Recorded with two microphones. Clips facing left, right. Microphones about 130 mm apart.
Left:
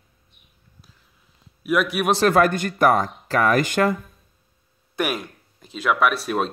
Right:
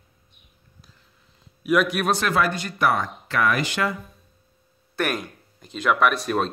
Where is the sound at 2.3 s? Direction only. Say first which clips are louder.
Left 5 dB; 50° left (ahead or behind).